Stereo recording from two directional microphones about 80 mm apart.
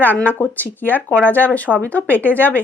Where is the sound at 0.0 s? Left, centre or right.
Left.